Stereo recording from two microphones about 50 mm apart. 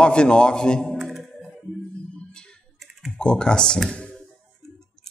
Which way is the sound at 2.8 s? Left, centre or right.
Centre.